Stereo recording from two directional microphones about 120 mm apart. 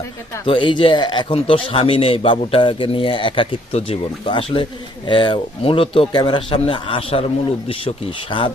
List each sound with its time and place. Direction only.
0.4 s speech: 45° left (ahead or behind)